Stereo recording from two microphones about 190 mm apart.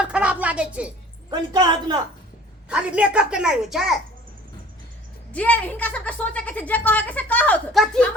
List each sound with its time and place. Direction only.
0.0 s music: 5° right (ahead or behind)
1.3 s a woman's voice: 25° right (ahead or behind)
2.6 s a woman's voice: 5° right (ahead or behind)
5.3 s a woman's voice: 5° left (ahead or behind)